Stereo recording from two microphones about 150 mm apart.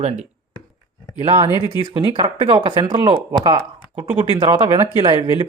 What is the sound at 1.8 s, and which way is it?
Speech, 30° right (ahead or behind).